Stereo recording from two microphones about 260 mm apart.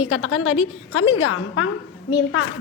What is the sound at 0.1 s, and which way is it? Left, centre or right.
A woman's voice, left.